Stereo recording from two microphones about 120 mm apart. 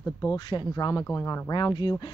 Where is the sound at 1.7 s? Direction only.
35° left (ahead or behind).